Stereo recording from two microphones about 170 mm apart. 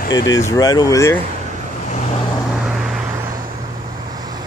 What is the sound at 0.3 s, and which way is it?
Speech, 20° left (ahead or behind).